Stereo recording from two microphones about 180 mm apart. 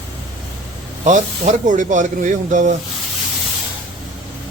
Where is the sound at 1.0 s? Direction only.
45° right (ahead or behind).